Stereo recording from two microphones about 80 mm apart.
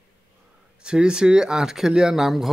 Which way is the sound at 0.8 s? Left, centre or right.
Centre.